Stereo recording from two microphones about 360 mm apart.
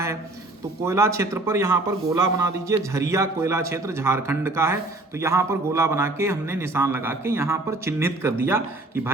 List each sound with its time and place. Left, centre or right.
0.9 s a man's voice: centre